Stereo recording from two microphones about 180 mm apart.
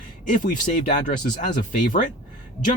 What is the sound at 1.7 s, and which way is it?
Speech, 45° left (ahead or behind).